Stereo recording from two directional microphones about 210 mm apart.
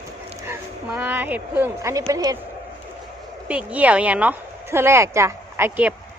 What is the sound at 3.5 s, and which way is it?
A woman's voice, 5° right (ahead or behind).